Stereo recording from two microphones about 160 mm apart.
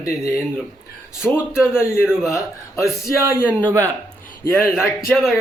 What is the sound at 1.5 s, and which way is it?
A man's voice, 5° right (ahead or behind).